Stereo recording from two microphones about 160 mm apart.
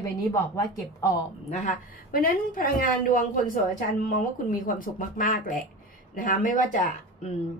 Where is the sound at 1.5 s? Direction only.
55° left (ahead or behind).